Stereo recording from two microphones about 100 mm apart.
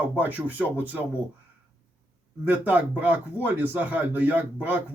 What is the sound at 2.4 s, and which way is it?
A man's voice, 15° right (ahead or behind).